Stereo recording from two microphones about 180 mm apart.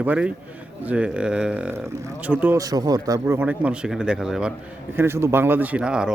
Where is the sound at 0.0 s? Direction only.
5° right (ahead or behind).